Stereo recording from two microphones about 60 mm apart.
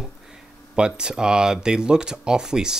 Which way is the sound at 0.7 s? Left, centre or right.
Centre.